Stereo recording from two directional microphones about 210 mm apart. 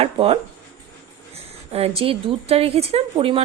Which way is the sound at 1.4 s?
30° right (ahead or behind).